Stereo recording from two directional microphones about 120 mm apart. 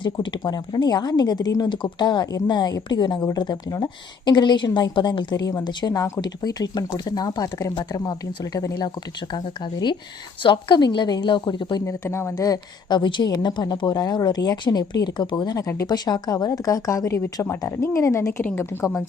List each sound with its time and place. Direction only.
0.0 s speech: 40° left (ahead or behind)
11.9 s speech: 20° left (ahead or behind)